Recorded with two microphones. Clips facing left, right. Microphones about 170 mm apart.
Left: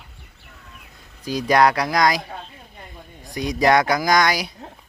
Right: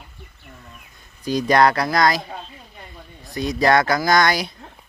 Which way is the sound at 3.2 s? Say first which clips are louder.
Even; 15° left (ahead or behind).